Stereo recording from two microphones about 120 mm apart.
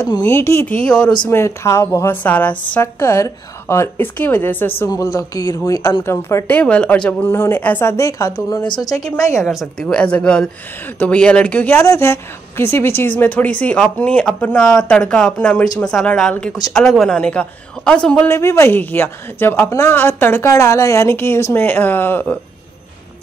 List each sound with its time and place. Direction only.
0.2 s a woman's voice: 20° left (ahead or behind)
0.7 s speech: 10° left (ahead or behind)
1.3 s a woman's voice: 20° left (ahead or behind)
4.8 s a woman's voice: 30° left (ahead or behind)
9.4 s a woman's voice: centre (ahead or behind)
18.3 s a woman's voice: 20° left (ahead or behind)